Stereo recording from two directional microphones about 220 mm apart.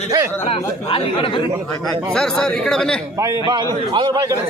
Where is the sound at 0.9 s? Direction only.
25° left (ahead or behind).